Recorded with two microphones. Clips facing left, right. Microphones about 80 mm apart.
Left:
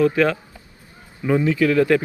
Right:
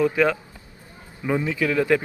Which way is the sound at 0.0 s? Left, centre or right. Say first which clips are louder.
Left 2 dB; centre.